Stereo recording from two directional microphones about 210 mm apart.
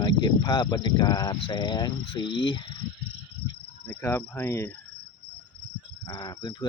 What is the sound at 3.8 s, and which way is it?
Cricket, 10° left (ahead or behind).